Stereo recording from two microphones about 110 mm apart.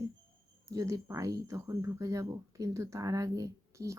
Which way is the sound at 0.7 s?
30° right (ahead or behind).